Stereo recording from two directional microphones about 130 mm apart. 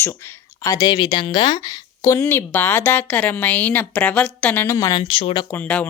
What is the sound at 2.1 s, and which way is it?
Speech, 20° left (ahead or behind).